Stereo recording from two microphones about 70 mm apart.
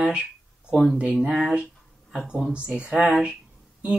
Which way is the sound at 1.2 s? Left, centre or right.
Centre.